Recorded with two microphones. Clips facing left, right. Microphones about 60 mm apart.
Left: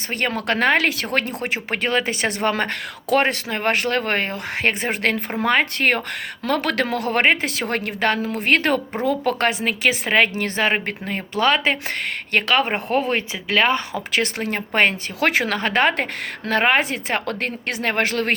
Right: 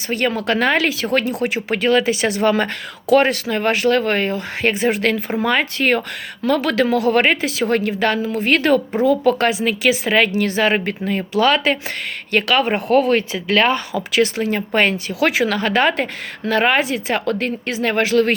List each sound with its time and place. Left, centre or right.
0.1 s a woman's voice: left